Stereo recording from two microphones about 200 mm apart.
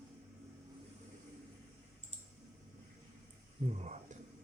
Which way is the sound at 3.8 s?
35° right (ahead or behind).